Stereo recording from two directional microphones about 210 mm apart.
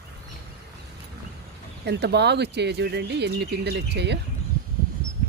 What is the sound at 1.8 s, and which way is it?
Speech, 55° right (ahead or behind).